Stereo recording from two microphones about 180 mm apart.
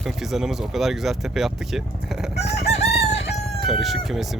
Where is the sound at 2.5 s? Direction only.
35° left (ahead or behind).